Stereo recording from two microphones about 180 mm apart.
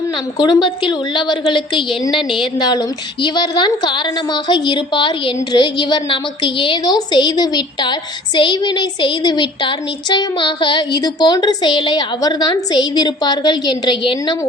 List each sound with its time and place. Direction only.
0.3 s a woman's voice: 25° left (ahead or behind)